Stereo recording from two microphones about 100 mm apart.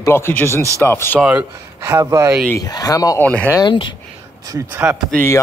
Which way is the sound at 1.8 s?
30° right (ahead or behind).